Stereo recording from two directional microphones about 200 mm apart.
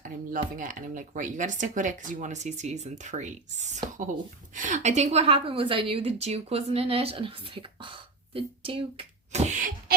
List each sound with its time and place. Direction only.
0.0 s a woman's voice: 40° right (ahead or behind)